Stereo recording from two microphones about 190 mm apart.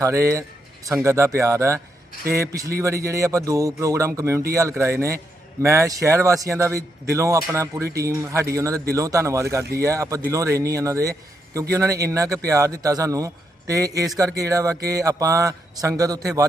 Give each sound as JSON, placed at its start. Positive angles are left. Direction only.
{"t": 0.0, "sound": "speech", "side_deg": -15}